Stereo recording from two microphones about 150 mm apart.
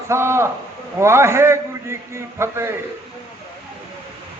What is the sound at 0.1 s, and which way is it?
A man's voice, 15° right (ahead or behind).